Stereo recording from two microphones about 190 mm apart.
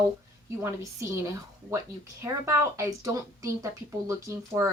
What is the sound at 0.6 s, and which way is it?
Speech, 15° right (ahead or behind).